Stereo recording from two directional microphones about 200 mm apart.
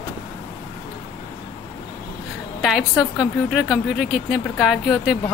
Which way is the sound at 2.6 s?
Centre (ahead or behind).